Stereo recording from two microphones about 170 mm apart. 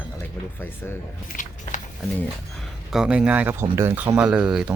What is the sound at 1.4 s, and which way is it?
Biting, 50° left (ahead or behind).